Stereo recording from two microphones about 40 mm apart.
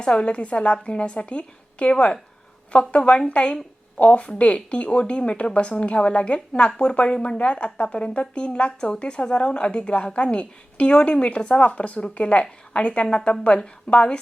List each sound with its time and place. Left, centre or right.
0.0 s a woman's voice: left